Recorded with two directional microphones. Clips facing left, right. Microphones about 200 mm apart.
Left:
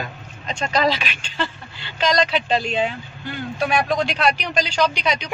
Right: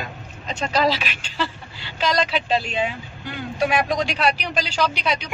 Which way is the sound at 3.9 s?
10° right (ahead or behind).